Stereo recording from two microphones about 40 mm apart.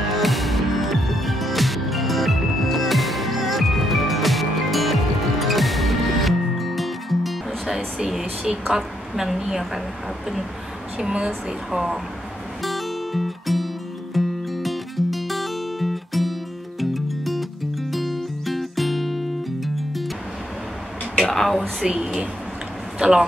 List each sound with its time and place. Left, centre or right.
0.1 s music: centre
8.2 s a woman's voice: centre
11.0 s a woman's voice: centre
11.7 s a woman's voice: centre
12.6 s music: centre
21.2 s a sound: centre
21.5 s a woman's voice: centre
21.9 s a sound: centre
22.9 s speech: centre